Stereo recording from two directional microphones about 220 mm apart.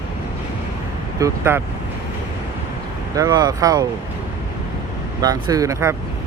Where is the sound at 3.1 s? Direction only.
15° right (ahead or behind).